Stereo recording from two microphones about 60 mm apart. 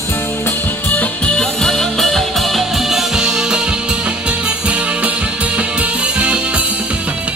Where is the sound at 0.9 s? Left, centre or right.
Left.